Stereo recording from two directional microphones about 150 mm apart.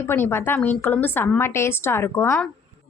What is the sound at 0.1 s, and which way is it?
A woman's voice, 15° left (ahead or behind).